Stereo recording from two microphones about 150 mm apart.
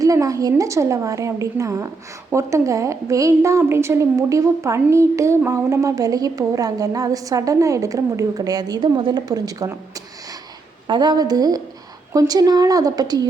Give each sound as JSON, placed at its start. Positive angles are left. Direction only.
{"t": 0.0, "sound": "a woman's voice", "side_deg": -20}